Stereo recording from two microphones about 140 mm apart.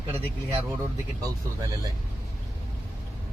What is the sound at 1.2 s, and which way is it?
Speech, 25° right (ahead or behind).